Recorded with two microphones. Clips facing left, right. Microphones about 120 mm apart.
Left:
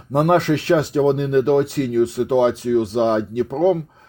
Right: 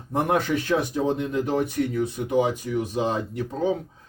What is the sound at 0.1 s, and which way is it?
Speech, 75° left (ahead or behind).